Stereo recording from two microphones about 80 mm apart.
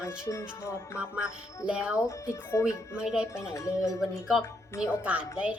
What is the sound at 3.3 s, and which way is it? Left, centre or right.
Speech, left.